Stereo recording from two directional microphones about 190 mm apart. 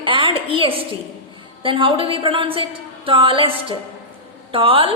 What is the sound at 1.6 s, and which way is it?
A woman's voice, 25° right (ahead or behind).